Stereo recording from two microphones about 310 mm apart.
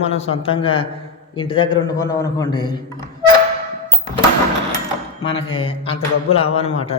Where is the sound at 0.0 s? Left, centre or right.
Centre.